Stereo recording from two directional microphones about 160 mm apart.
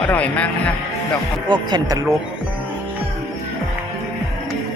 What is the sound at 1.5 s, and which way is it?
Speech, 25° right (ahead or behind).